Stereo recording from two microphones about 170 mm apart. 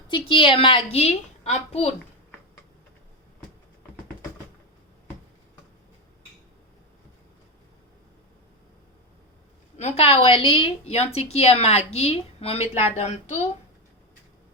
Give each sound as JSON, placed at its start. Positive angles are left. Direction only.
{"t": 0.1, "sound": "speech", "side_deg": 30}
{"t": 9.7, "sound": "speech", "side_deg": 40}